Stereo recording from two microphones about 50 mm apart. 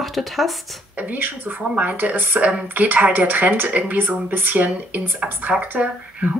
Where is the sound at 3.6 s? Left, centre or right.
Right.